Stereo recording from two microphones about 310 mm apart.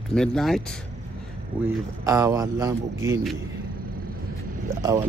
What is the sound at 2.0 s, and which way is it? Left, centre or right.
A man's voice, centre.